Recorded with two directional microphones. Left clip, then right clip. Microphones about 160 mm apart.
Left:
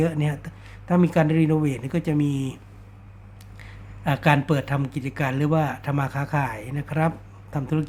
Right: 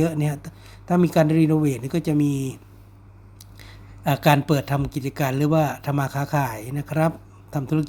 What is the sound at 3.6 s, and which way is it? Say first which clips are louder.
Speech: right 3 dB; 25° right (ahead or behind).